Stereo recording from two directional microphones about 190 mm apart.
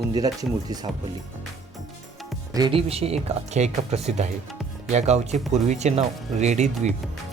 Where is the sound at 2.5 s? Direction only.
25° right (ahead or behind).